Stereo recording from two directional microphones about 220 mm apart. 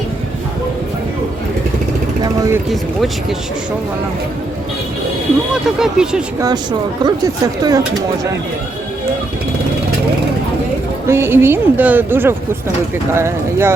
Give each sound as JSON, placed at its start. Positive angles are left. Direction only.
{"t": 2.2, "sound": "a sound", "side_deg": -15}
{"t": 2.6, "sound": "speech", "side_deg": 0}
{"t": 5.6, "sound": "speech", "side_deg": -5}
{"t": 6.4, "sound": "speech", "side_deg": -20}
{"t": 11.1, "sound": "speech", "side_deg": -10}